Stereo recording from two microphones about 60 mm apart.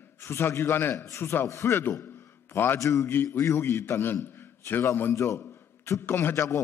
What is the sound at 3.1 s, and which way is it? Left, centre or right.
A man's voice, left.